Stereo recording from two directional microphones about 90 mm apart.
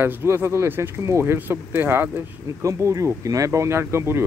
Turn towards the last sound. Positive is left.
turn(degrees=-30)  # may be behind; listen again after turning